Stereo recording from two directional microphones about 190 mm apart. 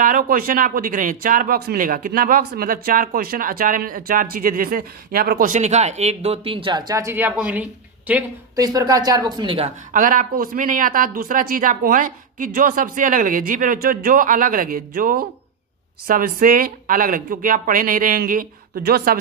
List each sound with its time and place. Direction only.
0.0 s speech: 45° right (ahead or behind); by 8.6 s 10° right (ahead or behind)
8.6 s speech: 20° right (ahead or behind)
9.9 s speech: 45° right (ahead or behind)